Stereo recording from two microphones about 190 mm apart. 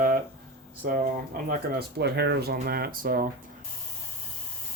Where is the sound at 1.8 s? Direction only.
60° right (ahead or behind).